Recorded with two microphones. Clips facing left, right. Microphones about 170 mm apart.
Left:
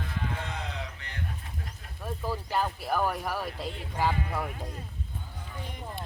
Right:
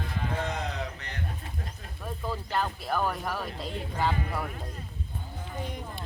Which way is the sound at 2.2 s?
10° left (ahead or behind).